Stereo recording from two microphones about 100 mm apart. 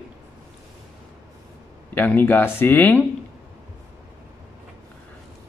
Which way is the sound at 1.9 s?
15° left (ahead or behind).